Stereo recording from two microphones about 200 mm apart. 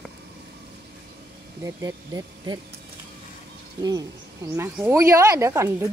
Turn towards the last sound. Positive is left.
turn(degrees=-15)  # may be behind; listen again after turning